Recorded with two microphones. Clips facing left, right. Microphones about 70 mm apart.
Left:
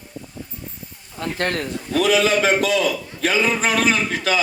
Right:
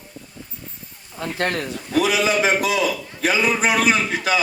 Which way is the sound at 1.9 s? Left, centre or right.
Centre.